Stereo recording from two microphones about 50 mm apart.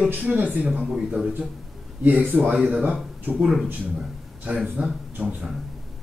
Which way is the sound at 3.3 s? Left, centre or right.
Centre.